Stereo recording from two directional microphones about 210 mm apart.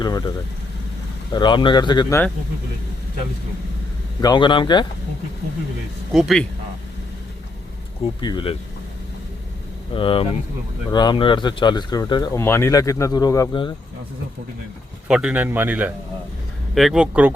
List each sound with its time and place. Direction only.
0.0 s speech: 20° left (ahead or behind)
4.2 s speech: 20° left (ahead or behind)
6.1 s speech: centre (ahead or behind)
8.0 s speech: 20° left (ahead or behind)
9.9 s speech: 25° left (ahead or behind)
15.0 s a man's voice: 5° right (ahead or behind)